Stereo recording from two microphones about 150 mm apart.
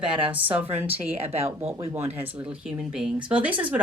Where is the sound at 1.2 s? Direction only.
40° right (ahead or behind).